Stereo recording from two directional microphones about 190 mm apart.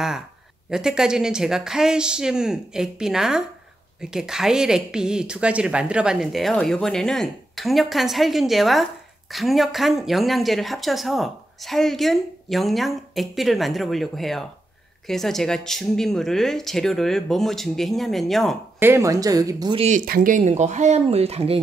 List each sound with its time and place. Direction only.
0.7 s speech: 5° right (ahead or behind)
18.8 s speech: 15° right (ahead or behind)
20.1 s speech: 45° right (ahead or behind)